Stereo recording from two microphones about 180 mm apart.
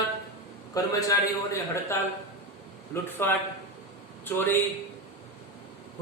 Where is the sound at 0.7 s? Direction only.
20° left (ahead or behind).